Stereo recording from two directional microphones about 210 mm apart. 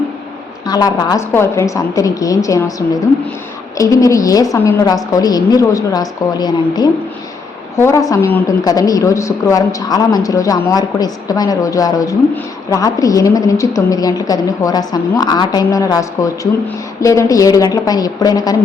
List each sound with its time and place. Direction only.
0.6 s a woman's voice: 20° left (ahead or behind)